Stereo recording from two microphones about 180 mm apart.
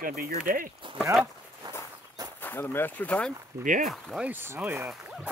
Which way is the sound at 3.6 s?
45° right (ahead or behind).